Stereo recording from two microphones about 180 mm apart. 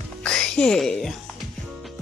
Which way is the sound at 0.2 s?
5° left (ahead or behind).